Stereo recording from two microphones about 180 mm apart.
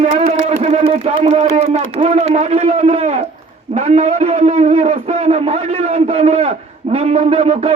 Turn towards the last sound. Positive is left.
turn(degrees=-35)  # may be behind; listen again after turning